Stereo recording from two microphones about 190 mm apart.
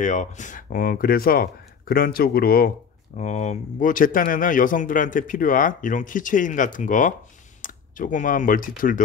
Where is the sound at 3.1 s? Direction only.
40° left (ahead or behind).